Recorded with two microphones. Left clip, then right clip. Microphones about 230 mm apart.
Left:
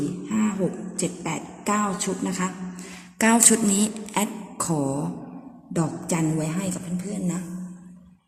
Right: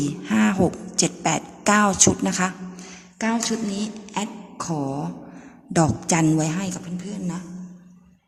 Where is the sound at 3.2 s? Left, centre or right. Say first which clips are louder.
Left 5 dB; centre.